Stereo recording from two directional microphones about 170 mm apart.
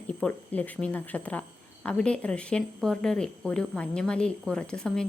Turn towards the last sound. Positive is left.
turn(degrees=5)  # may be behind; listen again after turning